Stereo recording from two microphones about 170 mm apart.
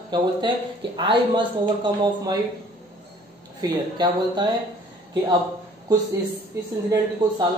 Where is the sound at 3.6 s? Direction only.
25° right (ahead or behind).